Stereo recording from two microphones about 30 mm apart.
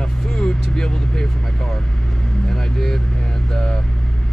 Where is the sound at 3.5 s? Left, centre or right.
Left.